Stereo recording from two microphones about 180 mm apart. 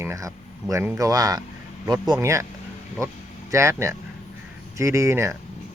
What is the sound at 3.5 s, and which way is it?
Speech, 15° right (ahead or behind).